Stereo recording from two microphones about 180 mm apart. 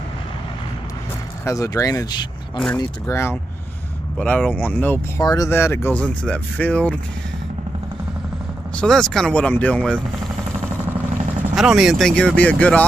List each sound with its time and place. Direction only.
1.4 s speech: 15° left (ahead or behind)
8.7 s speech: 5° left (ahead or behind)
11.5 s speech: 5° right (ahead or behind)